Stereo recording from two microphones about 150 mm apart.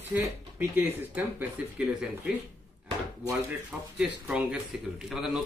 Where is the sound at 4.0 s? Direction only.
10° right (ahead or behind).